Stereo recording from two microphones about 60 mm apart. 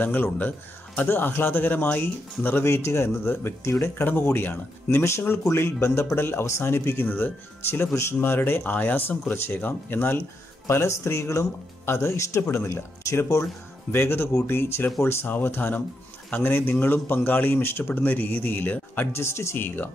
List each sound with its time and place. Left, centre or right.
0.0 s speech: left
2.6 s speech: left
5.5 s speech: left
10.7 s speech: left
19.1 s speech: left